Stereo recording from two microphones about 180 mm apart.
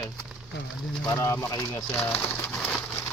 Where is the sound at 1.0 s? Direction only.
15° left (ahead or behind).